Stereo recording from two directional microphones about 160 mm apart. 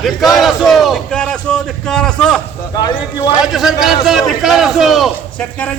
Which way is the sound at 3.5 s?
Centre (ahead or behind).